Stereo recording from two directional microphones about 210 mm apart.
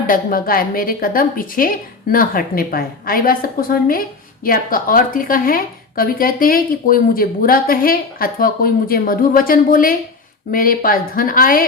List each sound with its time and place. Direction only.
0.1 s a woman's voice: 45° left (ahead or behind)